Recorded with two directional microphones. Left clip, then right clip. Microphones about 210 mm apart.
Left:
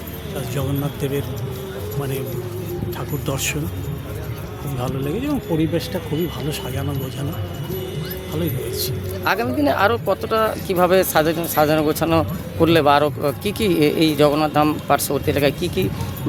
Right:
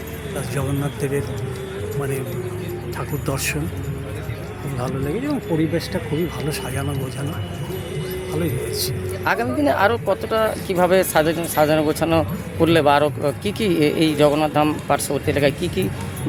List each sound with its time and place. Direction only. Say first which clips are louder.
3.2 s speech: even; 5° left (ahead or behind)
4.8 s speech: even; 10° left (ahead or behind)
9.2 s speech: even; 5° left (ahead or behind)